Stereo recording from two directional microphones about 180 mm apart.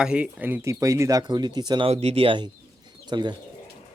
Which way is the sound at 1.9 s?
35° right (ahead or behind).